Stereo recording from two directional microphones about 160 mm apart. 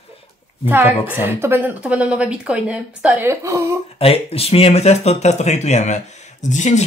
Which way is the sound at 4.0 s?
35° left (ahead or behind).